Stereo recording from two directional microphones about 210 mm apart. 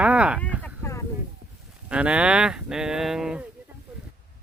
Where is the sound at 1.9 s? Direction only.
5° right (ahead or behind).